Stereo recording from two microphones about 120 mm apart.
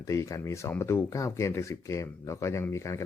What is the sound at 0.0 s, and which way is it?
Speech, 25° left (ahead or behind).